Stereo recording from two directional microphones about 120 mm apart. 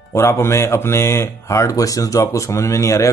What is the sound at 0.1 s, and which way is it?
Speech, 25° left (ahead or behind).